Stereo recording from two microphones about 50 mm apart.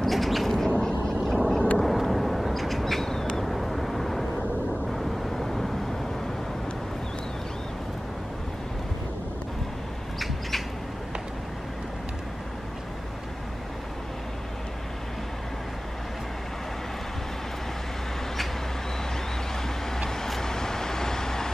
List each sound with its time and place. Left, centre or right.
0.0 s bird: centre
0.7 s boat: centre
1.2 s vehicle: centre
10.1 s rodents: centre
20.1 s vehicle: centre